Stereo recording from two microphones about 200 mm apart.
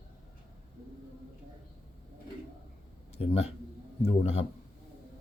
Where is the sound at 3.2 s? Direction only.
30° left (ahead or behind).